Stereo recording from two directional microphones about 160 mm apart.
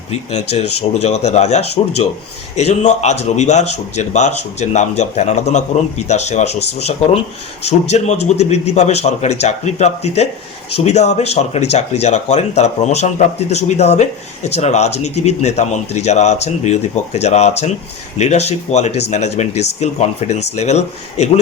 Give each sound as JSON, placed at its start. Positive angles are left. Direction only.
{"t": 0.1, "sound": "speech", "side_deg": 45}
{"t": 7.6, "sound": "speech", "side_deg": 45}